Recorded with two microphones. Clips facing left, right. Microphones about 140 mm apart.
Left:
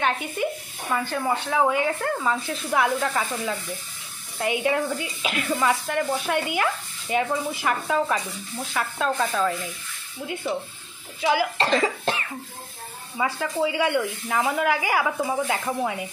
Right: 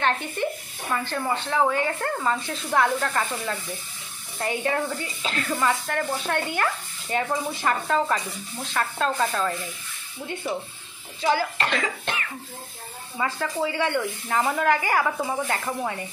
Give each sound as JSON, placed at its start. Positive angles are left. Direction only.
{"t": 0.0, "sound": "speech", "side_deg": 10}
{"t": 11.1, "sound": "speech", "side_deg": 5}
{"t": 11.5, "sound": "cough", "side_deg": 30}
{"t": 13.2, "sound": "speech", "side_deg": 10}